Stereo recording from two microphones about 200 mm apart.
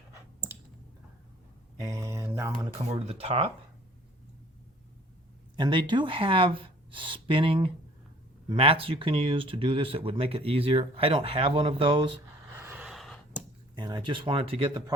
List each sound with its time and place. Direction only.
1.8 s speech: 15° right (ahead or behind)
2.9 s speech: 30° right (ahead or behind)
5.5 s speech: 25° right (ahead or behind)
12.5 s a sound: 10° right (ahead or behind)
13.7 s speech: 20° right (ahead or behind)